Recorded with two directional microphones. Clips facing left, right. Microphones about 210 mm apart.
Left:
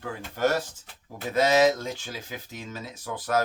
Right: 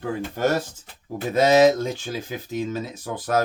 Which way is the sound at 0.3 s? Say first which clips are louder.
Right 1 dB; 20° right (ahead or behind).